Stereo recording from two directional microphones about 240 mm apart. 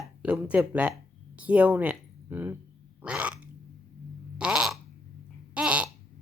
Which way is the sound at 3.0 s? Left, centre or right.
Centre.